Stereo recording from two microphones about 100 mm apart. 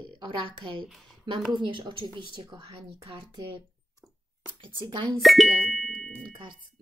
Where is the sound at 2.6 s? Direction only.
70° right (ahead or behind).